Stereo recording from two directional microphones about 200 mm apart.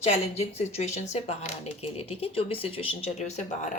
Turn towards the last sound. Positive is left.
turn(degrees=35)  # may be behind; listen again after turning